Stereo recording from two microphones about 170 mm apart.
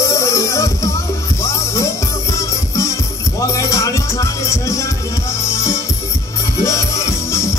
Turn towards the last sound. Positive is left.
turn(degrees=15)  # may be behind; listen again after turning